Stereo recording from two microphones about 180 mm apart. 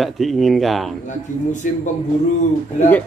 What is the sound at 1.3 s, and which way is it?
Speech, 45° left (ahead or behind).